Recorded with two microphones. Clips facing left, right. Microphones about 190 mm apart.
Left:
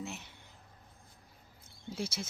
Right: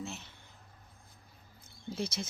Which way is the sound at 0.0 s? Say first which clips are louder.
Even; 15° left (ahead or behind).